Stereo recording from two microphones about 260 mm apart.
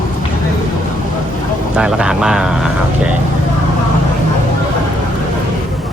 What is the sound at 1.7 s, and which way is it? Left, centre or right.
Speech, centre.